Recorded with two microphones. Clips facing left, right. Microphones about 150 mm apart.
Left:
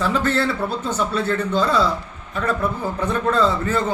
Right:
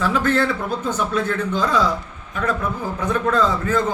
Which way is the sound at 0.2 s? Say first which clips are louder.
Right 1 dB; 10° left (ahead or behind).